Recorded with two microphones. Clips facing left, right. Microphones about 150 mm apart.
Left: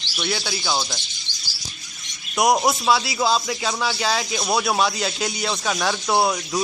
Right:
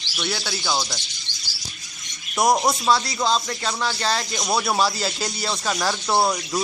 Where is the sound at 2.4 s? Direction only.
Centre (ahead or behind).